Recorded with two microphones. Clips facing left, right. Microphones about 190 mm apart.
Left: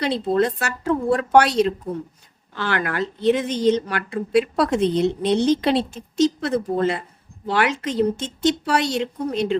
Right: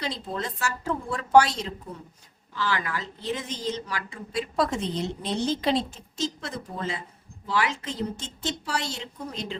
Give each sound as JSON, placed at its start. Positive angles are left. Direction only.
{"t": 0.0, "sound": "a woman's voice", "side_deg": 65}